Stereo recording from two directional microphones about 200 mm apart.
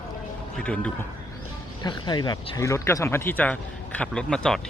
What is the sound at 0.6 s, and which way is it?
Speech, 5° left (ahead or behind).